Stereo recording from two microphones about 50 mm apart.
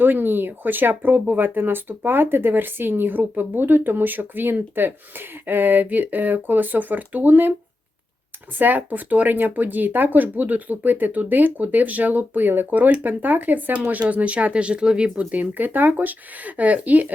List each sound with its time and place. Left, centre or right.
0.0 s speech: right
8.5 s speech: right